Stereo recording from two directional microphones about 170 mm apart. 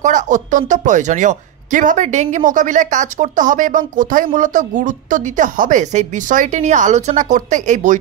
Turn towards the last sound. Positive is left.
turn(degrees=-45)  # may be behind; listen again after turning